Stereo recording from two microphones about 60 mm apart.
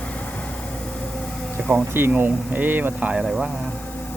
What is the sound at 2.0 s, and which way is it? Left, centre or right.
Speech, right.